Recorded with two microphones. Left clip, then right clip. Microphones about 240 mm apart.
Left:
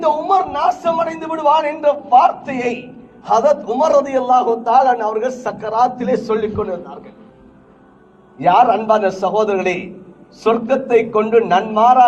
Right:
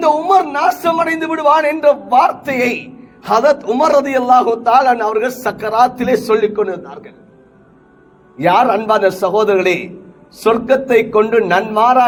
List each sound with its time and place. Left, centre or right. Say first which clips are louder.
0.0 s a man's voice: right 3 dB; right
8.4 s a man's voice: even; right